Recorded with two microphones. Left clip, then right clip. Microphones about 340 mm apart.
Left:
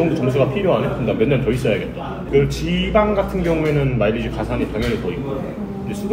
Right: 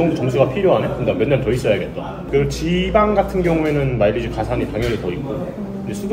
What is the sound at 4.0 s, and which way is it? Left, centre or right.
Speech, right.